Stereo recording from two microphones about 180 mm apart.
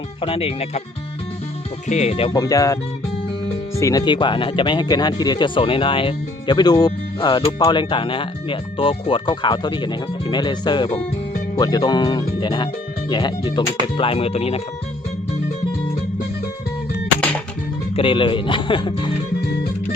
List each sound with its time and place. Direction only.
0.2 s speech: 30° left (ahead or behind)
1.9 s speech: 35° left (ahead or behind)
2.4 s speech: 20° left (ahead or behind)
3.8 s speech: 20° left (ahead or behind); by 14.6 s 35° left (ahead or behind)
17.9 s speech: 30° left (ahead or behind)